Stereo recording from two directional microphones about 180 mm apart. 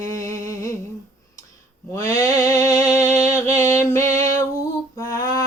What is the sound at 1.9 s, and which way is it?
Music, 15° left (ahead or behind).